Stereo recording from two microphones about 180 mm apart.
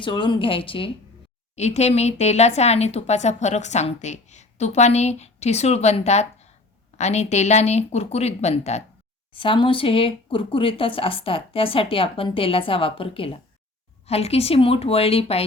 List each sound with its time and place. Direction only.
0.0 s a woman's voice: 25° left (ahead or behind)